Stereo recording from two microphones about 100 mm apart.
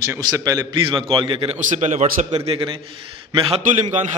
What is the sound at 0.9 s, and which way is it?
Speech, 60° right (ahead or behind).